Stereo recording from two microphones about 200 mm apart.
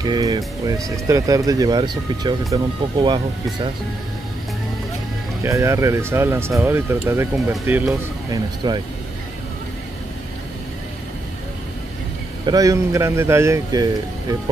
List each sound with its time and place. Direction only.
0.0 s speech: 20° right (ahead or behind)
5.4 s speech: 15° right (ahead or behind)
8.3 s speech: 20° right (ahead or behind)
12.4 s speech: 15° right (ahead or behind)